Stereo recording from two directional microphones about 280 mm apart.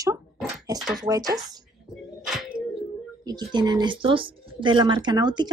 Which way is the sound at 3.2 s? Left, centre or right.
Centre.